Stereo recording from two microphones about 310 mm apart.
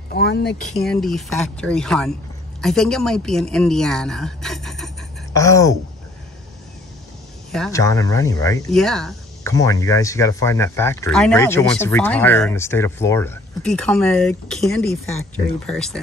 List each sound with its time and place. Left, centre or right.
0.1 s speech: left
0.7 s a woman's voice: centre
7.5 s speech: centre